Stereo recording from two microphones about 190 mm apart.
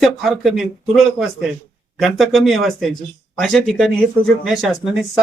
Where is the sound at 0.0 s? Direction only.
Centre (ahead or behind).